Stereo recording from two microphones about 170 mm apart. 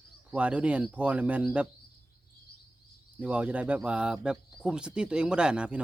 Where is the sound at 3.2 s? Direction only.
10° right (ahead or behind).